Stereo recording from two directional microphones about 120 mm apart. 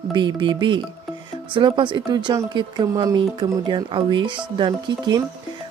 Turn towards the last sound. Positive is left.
turn(degrees=-40)  # may be behind; listen again after turning